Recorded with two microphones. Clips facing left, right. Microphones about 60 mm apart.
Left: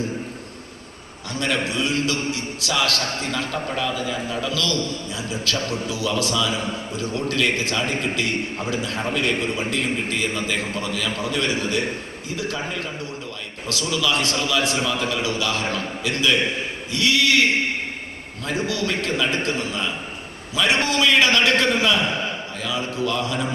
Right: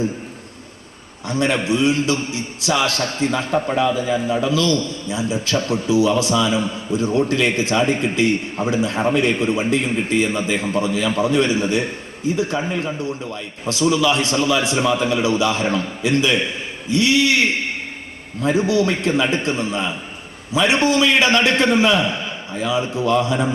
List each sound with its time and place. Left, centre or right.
1.3 s a man's voice: right
18.4 s a man's voice: right